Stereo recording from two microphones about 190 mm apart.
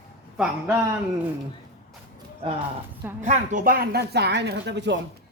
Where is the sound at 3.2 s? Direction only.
40° right (ahead or behind).